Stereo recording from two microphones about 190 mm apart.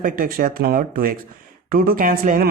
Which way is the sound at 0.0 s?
45° right (ahead or behind).